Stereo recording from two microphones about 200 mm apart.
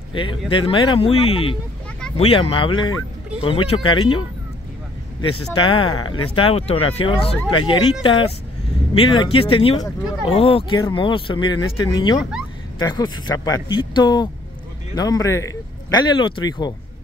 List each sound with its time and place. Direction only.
0.1 s a man's voice: 25° left (ahead or behind)
5.6 s a man's voice: 25° left (ahead or behind)
12.2 s speech: 5° right (ahead or behind)
12.8 s a man's voice: 20° left (ahead or behind)